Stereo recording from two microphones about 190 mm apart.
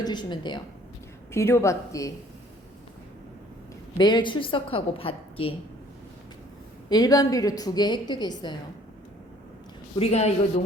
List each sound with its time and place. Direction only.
0.0 s a woman's voice: 25° left (ahead or behind)
1.3 s speech: 15° left (ahead or behind)
3.9 s a woman's voice: 20° left (ahead or behind)
6.9 s a woman's voice: 20° left (ahead or behind)
10.0 s speech: 35° left (ahead or behind)